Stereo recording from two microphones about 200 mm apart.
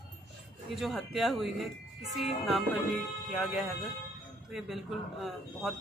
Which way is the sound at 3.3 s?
Centre (ahead or behind).